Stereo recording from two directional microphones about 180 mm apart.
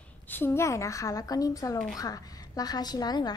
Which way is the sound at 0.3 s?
15° left (ahead or behind).